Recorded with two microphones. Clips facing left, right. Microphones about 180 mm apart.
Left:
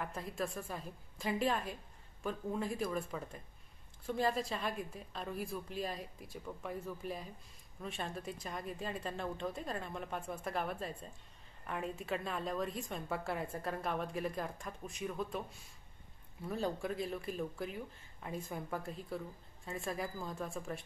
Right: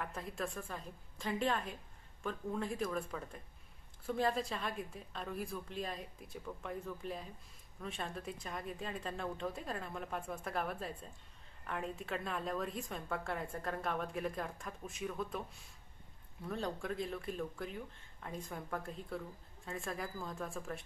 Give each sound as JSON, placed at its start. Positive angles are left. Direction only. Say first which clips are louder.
{"t": 0.0, "sound": "a woman's voice", "louder": "left 2 dB", "side_deg": 0}
{"t": 16.4, "sound": "a woman's voice", "louder": "left 2 dB", "side_deg": 5}